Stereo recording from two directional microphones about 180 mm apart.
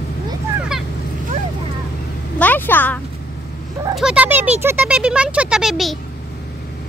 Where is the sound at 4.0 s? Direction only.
5° right (ahead or behind).